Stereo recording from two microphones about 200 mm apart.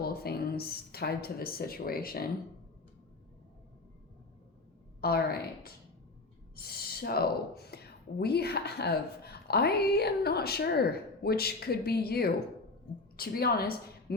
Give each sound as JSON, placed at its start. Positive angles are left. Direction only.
{"t": 0.0, "sound": "a woman's voice", "side_deg": 50}
{"t": 4.9, "sound": "a woman's voice", "side_deg": 50}